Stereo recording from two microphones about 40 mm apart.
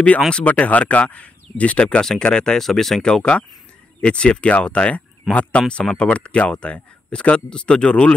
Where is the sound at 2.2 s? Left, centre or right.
Centre.